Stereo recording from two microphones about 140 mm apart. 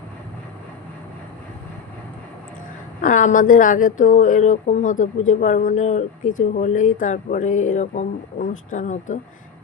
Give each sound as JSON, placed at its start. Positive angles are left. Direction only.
{"t": 3.0, "sound": "speech", "side_deg": 65}